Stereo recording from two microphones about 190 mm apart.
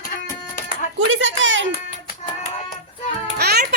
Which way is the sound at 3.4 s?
60° right (ahead or behind).